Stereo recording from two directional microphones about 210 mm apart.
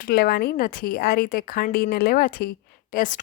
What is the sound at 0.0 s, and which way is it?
Speech, 45° left (ahead or behind).